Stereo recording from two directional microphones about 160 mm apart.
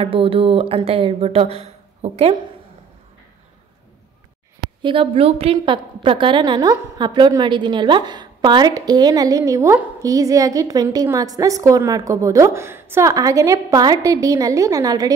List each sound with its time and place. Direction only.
0.0 s speech: 35° right (ahead or behind)
4.8 s a woman's voice: 35° right (ahead or behind)